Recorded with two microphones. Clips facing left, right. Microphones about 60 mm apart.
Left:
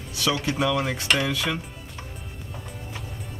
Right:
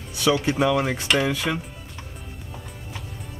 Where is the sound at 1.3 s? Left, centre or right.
Right.